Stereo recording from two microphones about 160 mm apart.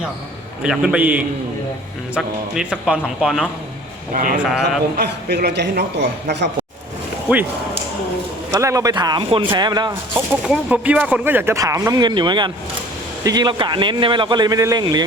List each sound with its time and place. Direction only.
0.6 s a man's voice: 5° right (ahead or behind)
4.1 s a man's voice: 55° right (ahead or behind)
4.4 s a man's voice: centre (ahead or behind)
4.9 s speech: 90° right
8.5 s a man's voice: 20° right (ahead or behind)
10.2 s a man's voice: 5° right (ahead or behind); by 15.0 s 25° right (ahead or behind)